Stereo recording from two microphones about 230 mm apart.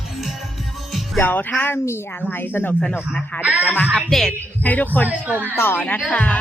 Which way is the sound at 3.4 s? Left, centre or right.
Centre.